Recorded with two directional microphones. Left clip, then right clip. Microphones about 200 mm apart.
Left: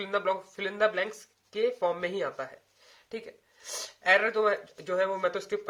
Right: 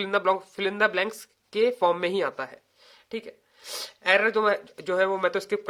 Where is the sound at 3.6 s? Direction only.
45° right (ahead or behind).